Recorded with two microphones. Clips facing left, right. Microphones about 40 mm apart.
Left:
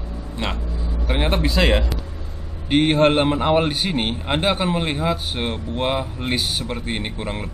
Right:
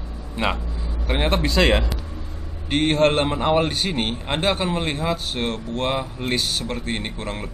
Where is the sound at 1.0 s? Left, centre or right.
Centre.